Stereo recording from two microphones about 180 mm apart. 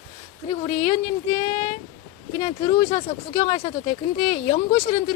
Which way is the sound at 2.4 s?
35° left (ahead or behind).